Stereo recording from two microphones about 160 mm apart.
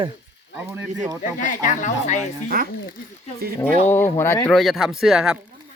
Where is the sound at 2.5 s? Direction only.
65° right (ahead or behind).